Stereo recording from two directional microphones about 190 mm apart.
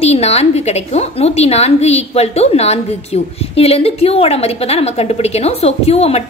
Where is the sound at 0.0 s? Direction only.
35° left (ahead or behind).